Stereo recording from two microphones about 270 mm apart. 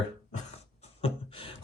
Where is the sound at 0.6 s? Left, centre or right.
Left.